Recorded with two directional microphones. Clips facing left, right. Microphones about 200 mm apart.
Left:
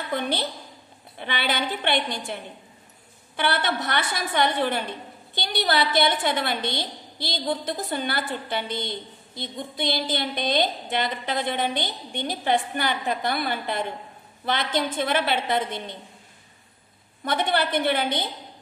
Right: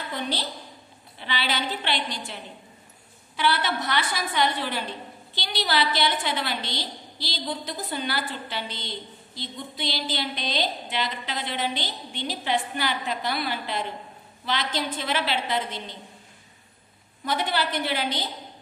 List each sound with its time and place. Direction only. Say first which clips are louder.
0.1 s a woman's voice: left 5 dB; 55° left (ahead or behind)
17.2 s a woman's voice: left 3 dB; 55° left (ahead or behind)